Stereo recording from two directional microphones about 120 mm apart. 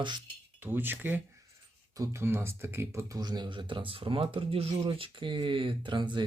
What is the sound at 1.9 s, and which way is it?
Speech, 25° right (ahead or behind).